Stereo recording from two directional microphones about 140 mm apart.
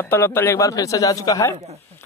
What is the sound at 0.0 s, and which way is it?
A man's voice, 15° left (ahead or behind).